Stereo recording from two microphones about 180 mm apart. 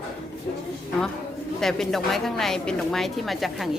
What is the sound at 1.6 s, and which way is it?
A woman's voice, centre (ahead or behind).